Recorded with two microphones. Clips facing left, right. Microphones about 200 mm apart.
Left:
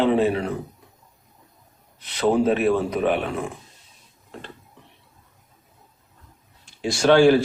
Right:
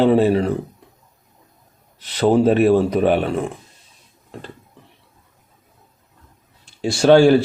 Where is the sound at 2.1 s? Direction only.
35° right (ahead or behind).